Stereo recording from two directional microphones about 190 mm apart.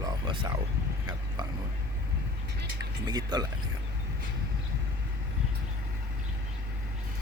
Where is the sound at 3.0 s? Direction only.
20° right (ahead or behind).